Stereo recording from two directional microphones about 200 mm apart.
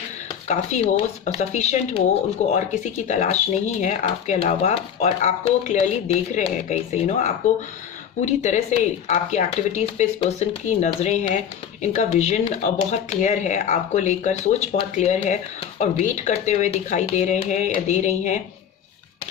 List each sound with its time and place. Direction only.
0.4 s speech: 35° left (ahead or behind)